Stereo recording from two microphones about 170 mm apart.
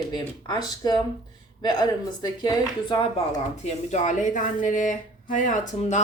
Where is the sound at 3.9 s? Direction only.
45° left (ahead or behind).